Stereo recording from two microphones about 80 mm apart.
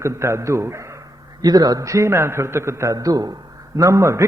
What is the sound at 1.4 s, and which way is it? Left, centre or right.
A man's voice, right.